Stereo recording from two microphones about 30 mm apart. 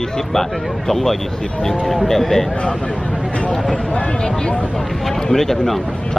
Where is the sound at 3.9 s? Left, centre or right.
Left.